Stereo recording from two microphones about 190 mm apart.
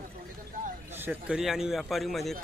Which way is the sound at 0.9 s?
10° right (ahead or behind).